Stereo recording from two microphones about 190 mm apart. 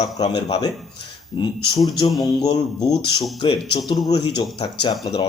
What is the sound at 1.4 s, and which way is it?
Speech, 25° left (ahead or behind).